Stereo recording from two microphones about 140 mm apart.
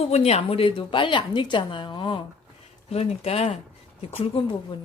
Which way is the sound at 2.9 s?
50° left (ahead or behind).